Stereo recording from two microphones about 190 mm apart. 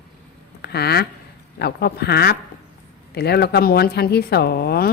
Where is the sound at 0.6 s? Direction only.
55° left (ahead or behind).